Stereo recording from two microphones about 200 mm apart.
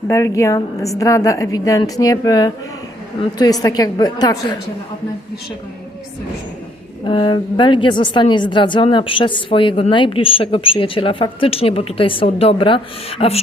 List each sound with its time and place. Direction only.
0.1 s a woman's voice: 15° left (ahead or behind)
7.0 s a woman's voice: 25° left (ahead or behind)